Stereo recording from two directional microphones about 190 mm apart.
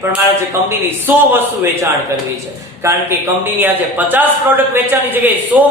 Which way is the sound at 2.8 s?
15° right (ahead or behind).